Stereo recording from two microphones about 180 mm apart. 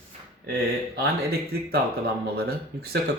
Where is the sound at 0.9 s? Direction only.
60° right (ahead or behind).